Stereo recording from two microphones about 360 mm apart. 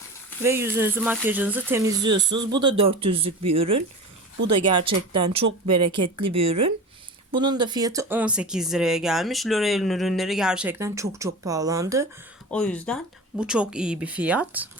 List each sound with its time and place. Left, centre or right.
0.4 s speech: centre
4.9 s speech: centre
12.5 s speech: centre